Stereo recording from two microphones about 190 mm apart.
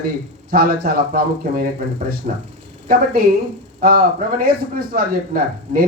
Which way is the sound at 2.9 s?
50° right (ahead or behind).